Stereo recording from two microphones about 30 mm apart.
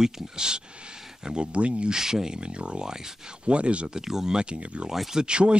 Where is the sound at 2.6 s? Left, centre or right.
Right.